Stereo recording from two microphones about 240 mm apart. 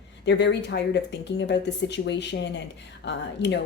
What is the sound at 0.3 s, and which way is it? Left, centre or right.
Speech, left.